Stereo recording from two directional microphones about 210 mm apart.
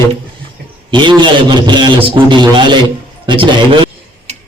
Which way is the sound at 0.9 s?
20° right (ahead or behind).